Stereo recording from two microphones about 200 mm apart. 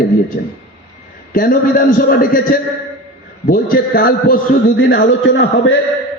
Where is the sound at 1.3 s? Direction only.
45° left (ahead or behind).